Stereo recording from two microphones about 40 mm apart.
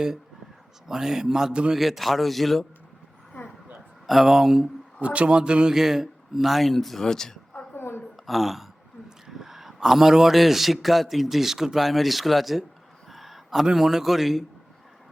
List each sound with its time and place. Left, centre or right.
0.9 s a man's voice: centre
3.3 s vehicle: left
4.0 s a man's voice: centre
4.9 s speech: right
5.3 s speech: right
5.7 s speech: centre
8.1 s a man's voice: centre
13.1 s a sound: centre
13.7 s speech: centre